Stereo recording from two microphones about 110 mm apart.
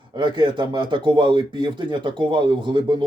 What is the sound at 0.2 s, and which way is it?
Speech, 45° right (ahead or behind).